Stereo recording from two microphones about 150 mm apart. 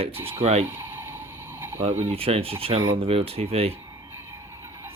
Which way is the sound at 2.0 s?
40° right (ahead or behind).